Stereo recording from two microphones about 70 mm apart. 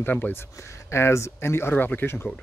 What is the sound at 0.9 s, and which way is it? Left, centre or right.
Speech, left.